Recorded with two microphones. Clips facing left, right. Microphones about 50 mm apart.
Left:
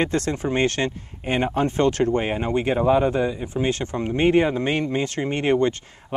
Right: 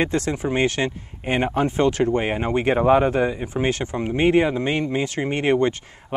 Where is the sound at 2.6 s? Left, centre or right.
Right.